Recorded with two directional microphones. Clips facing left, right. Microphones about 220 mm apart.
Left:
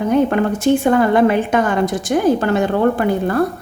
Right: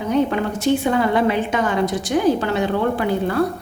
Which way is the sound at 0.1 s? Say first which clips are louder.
Left 3 dB; 50° left (ahead or behind).